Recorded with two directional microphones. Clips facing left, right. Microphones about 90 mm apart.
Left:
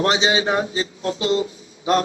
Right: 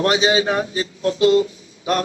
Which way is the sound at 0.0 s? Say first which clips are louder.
Right 2 dB; 25° left (ahead or behind).